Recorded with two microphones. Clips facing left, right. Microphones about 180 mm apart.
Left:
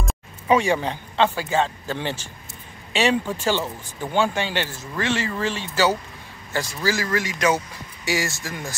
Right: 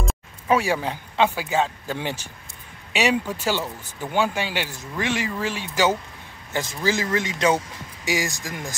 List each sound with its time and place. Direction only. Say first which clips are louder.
0.0 s a man's voice: right 1 dB; centre (ahead or behind); by 8.7 s 15° right (ahead or behind)